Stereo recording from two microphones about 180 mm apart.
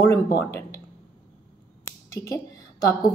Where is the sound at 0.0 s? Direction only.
15° left (ahead or behind).